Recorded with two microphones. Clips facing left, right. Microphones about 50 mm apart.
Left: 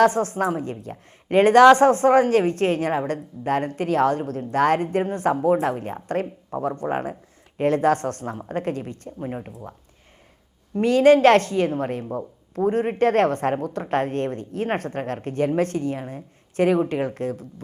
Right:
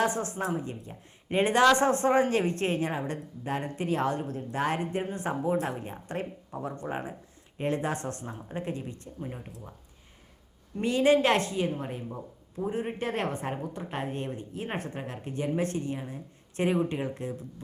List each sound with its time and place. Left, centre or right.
0.0 s speech: left
1.6 s a woman's voice: left
6.8 s a woman's voice: left
7.6 s speech: left
9.1 s a woman's voice: left
10.8 s speech: left
12.6 s speech: left
17.2 s speech: left